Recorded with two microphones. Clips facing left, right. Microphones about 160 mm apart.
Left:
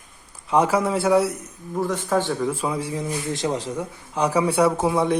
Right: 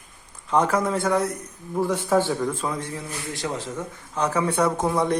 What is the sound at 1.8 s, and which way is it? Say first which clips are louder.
Speech: right 1 dB; 10° right (ahead or behind).